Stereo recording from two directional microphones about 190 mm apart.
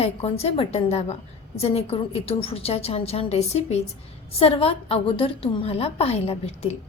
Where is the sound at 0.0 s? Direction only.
30° left (ahead or behind).